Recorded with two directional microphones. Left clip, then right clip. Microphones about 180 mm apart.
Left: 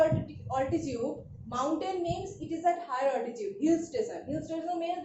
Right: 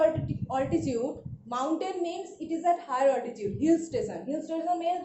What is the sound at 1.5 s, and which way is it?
A woman's voice, 60° right (ahead or behind).